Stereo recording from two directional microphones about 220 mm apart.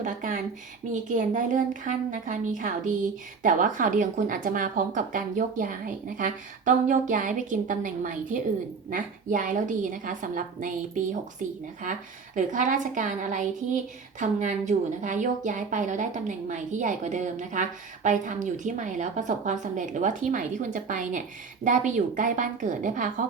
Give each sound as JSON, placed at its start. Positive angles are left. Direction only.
{"t": 0.0, "sound": "a sound", "side_deg": -35}
{"t": 1.1, "sound": "a woman's voice", "side_deg": -35}
{"t": 11.8, "sound": "a woman's voice", "side_deg": -35}